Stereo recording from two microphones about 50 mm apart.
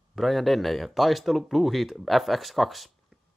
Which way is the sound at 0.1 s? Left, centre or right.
Centre.